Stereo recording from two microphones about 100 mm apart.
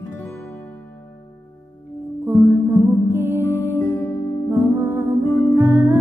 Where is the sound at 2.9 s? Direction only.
20° right (ahead or behind).